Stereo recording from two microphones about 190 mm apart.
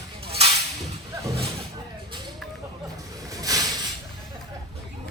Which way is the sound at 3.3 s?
20° right (ahead or behind).